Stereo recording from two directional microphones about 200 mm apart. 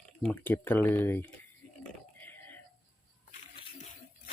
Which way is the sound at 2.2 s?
10° left (ahead or behind).